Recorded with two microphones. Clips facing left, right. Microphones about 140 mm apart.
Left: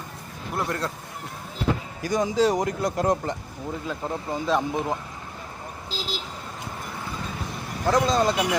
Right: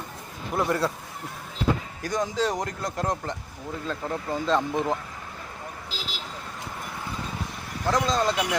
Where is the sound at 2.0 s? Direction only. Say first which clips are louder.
Left 6 dB; 5° left (ahead or behind).